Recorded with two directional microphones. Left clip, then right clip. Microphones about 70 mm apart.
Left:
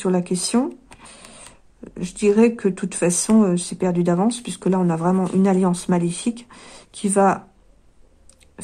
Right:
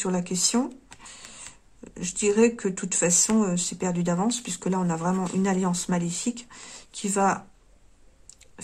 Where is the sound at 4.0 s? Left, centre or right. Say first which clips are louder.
Left 6 dB; left.